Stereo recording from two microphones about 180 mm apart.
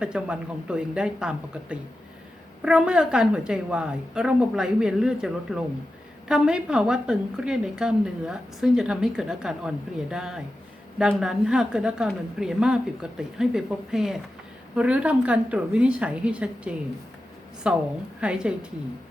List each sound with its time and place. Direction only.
0.0 s a woman's voice: 5° right (ahead or behind)